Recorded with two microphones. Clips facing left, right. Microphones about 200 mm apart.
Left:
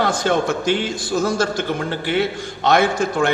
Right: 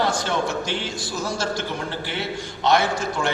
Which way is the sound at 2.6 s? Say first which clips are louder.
Left 4 dB; 50° left (ahead or behind).